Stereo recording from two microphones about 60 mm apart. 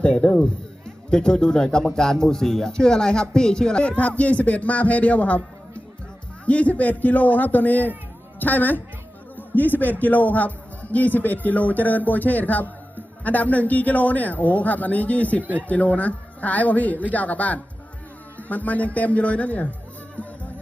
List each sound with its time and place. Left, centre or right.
0.0 s a man's voice: centre